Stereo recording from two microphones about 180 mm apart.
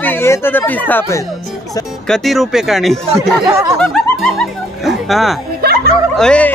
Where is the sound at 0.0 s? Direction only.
10° left (ahead or behind).